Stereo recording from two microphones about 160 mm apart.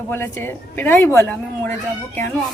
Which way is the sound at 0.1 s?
15° left (ahead or behind).